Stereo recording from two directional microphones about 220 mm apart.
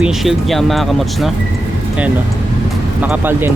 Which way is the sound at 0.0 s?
Centre (ahead or behind).